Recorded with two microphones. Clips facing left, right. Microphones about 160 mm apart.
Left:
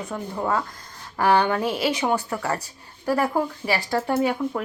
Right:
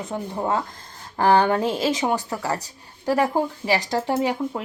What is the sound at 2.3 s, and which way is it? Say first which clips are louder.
Speech: even; 15° right (ahead or behind).